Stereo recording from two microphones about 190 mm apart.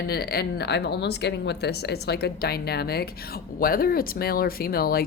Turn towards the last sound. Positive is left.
turn(degrees=55)  # may be behind; listen again after turning